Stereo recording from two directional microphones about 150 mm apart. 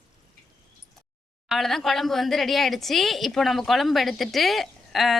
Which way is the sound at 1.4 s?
Centre (ahead or behind).